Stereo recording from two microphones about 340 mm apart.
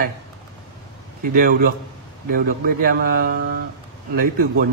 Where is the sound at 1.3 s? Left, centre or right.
Right.